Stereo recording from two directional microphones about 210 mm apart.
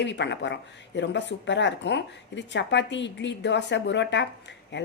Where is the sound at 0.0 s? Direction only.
55° left (ahead or behind).